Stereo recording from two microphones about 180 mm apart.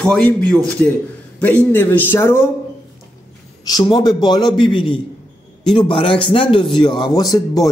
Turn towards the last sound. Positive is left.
turn(degrees=20)  # may be behind; listen again after turning